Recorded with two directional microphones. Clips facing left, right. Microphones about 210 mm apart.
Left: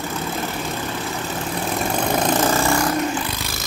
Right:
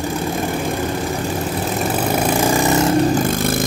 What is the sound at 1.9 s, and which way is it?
Vehicle, 10° right (ahead or behind).